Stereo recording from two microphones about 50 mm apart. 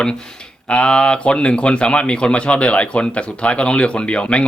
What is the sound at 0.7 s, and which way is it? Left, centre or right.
A man's voice, centre.